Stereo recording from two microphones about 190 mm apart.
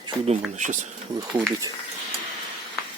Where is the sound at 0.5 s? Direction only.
40° right (ahead or behind).